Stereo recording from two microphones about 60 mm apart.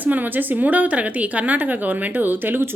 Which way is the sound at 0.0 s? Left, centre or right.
Right.